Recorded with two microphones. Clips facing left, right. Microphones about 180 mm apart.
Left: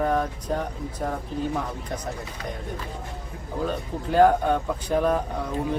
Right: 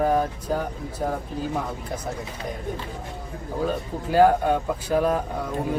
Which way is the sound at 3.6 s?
5° right (ahead or behind).